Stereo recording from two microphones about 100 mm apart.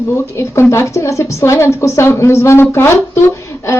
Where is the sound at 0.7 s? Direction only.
30° left (ahead or behind).